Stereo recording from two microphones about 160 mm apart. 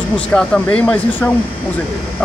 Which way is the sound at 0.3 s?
5° left (ahead or behind).